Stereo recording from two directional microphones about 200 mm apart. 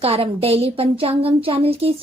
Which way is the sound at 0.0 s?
30° right (ahead or behind).